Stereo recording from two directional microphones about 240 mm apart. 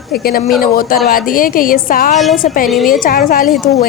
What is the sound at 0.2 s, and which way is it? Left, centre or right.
A woman's voice, left.